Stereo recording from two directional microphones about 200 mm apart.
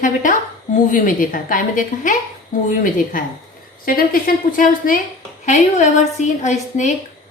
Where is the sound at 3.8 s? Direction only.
45° left (ahead or behind).